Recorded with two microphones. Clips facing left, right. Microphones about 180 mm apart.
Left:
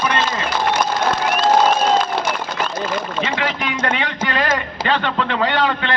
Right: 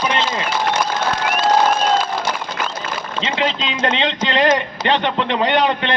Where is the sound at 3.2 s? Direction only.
20° right (ahead or behind).